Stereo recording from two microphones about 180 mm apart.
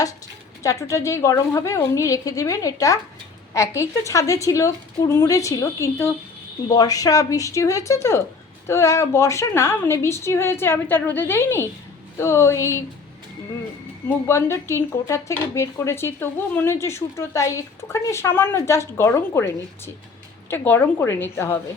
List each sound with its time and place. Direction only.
0.6 s speech: 15° left (ahead or behind)
14.3 s speech: 15° left (ahead or behind)